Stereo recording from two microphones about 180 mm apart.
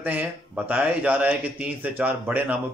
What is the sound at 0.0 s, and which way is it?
A man's voice, 10° right (ahead or behind).